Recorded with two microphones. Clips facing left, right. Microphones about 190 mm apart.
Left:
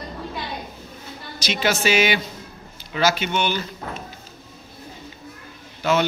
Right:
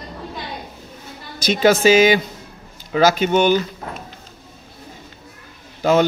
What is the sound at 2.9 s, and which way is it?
Speech, 40° right (ahead or behind).